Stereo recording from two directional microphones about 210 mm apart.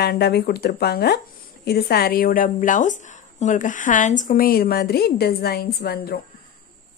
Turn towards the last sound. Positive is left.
turn(degrees=45)  # may be behind; listen again after turning